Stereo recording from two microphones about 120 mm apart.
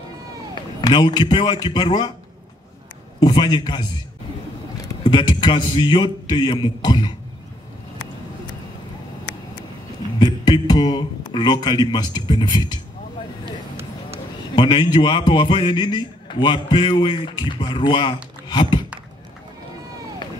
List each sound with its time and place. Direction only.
0.7 s a man's voice: 35° left (ahead or behind)
3.2 s a man's voice: 35° left (ahead or behind)
5.0 s a man's voice: 40° left (ahead or behind)
10.1 s speech: 40° left (ahead or behind)
14.5 s a man's voice: 40° left (ahead or behind)